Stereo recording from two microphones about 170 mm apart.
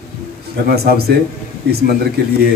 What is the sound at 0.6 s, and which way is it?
Speech, 65° right (ahead or behind).